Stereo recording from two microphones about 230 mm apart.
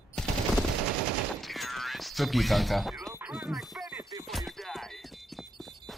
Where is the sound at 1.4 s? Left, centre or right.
Centre.